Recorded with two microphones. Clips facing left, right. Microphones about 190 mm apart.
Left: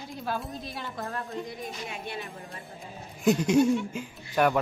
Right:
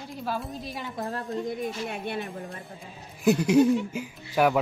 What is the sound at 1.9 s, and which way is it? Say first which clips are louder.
Music: right 5 dB; 60° right (ahead or behind).